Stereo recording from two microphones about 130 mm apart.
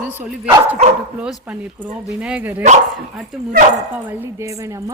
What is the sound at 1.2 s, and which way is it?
Speech, 10° right (ahead or behind).